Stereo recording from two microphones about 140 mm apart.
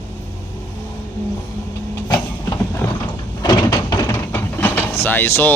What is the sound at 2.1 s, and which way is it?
Vehicle, 25° left (ahead or behind).